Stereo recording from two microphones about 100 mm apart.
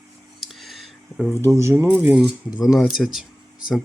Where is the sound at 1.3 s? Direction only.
30° right (ahead or behind).